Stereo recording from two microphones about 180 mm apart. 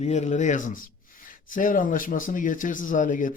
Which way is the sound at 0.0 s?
40° left (ahead or behind).